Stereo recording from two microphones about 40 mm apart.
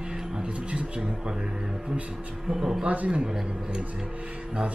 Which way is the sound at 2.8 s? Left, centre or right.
Right.